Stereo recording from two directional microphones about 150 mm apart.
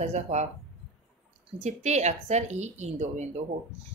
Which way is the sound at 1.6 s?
50° right (ahead or behind).